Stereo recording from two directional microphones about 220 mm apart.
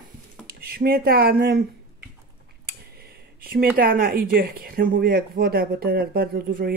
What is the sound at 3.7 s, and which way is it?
Speech, 40° right (ahead or behind).